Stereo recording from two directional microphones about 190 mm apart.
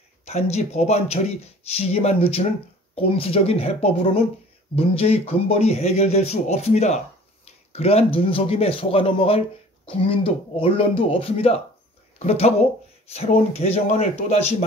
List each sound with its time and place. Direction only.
0.2 s speech: 35° left (ahead or behind)